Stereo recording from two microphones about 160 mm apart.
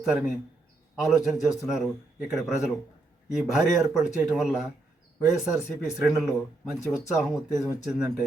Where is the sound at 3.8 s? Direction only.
15° right (ahead or behind).